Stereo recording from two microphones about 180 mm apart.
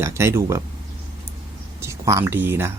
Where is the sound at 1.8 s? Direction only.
15° right (ahead or behind).